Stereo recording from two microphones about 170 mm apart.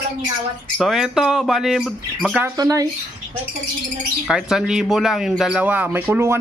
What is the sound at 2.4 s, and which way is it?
Speech, 20° right (ahead or behind).